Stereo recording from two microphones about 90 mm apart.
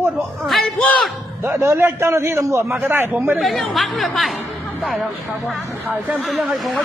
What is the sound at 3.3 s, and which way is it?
Speech, centre (ahead or behind).